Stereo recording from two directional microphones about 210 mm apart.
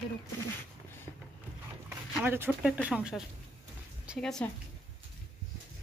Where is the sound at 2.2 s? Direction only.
10° right (ahead or behind).